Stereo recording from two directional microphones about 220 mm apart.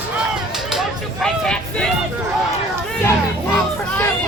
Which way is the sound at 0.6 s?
Centre (ahead or behind).